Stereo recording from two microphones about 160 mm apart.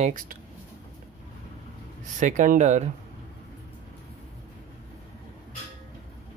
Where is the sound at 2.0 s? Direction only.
50° right (ahead or behind).